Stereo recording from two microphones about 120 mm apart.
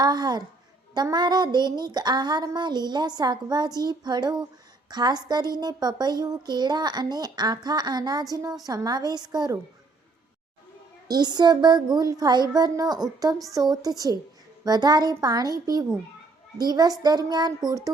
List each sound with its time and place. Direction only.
0.0 s a woman's voice: 35° right (ahead or behind)
11.1 s a woman's voice: 35° right (ahead or behind)